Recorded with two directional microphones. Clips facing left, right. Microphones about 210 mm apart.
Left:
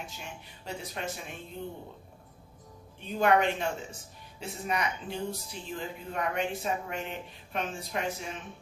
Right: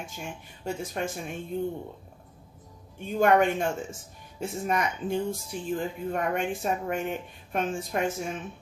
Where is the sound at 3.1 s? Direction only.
50° right (ahead or behind).